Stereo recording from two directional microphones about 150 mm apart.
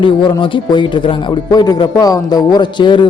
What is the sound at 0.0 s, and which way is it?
A man's voice, 30° left (ahead or behind).